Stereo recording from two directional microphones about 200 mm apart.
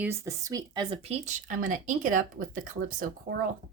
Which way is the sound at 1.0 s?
35° right (ahead or behind).